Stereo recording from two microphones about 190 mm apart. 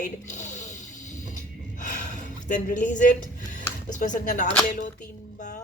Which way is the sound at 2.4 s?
40° left (ahead or behind).